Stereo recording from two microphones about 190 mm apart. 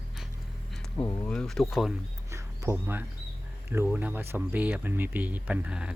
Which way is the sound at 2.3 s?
15° right (ahead or behind).